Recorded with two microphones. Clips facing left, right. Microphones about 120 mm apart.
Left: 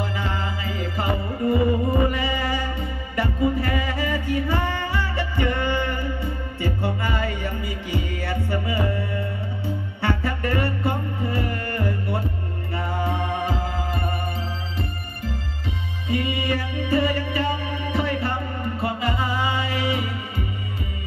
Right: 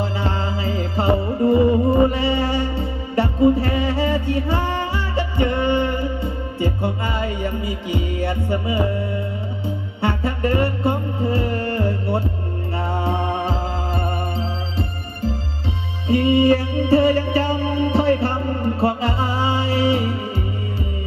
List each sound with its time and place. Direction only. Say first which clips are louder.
0.0 s music: right 4 dB; 30° right (ahead or behind)
16.1 s music: right 10 dB; 30° right (ahead or behind)